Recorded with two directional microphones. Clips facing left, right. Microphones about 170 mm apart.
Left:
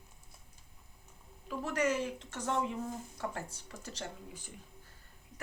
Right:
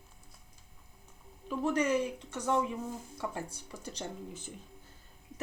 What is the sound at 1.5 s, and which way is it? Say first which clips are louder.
Speech: right 3 dB; 20° right (ahead or behind).